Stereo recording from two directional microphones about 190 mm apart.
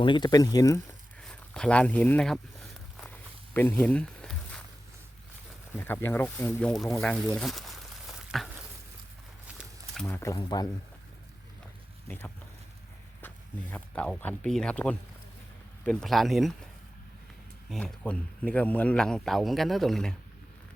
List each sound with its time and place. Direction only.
0.0 s speech: 25° left (ahead or behind)
1.2 s speech: 5° left (ahead or behind)
3.0 s walk: 10° left (ahead or behind)
5.7 s speech: 10° left (ahead or behind)
7.0 s a sound: 5° left (ahead or behind)
9.9 s speech: 5° left (ahead or behind)
13.2 s a man's voice: 10° left (ahead or behind)
17.7 s a man's voice: 5° left (ahead or behind)